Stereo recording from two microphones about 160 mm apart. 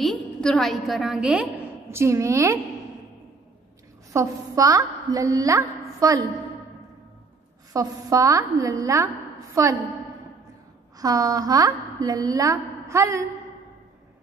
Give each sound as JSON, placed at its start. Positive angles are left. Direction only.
{"t": 0.0, "sound": "a woman's voice", "side_deg": 5}
{"t": 1.9, "sound": "a woman's voice", "side_deg": -15}
{"t": 4.1, "sound": "a woman's voice", "side_deg": -20}
{"t": 7.7, "sound": "a woman's voice", "side_deg": -20}
{"t": 11.0, "sound": "a woman's voice", "side_deg": -20}